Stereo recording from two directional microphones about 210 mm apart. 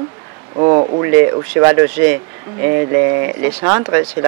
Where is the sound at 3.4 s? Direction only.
15° right (ahead or behind).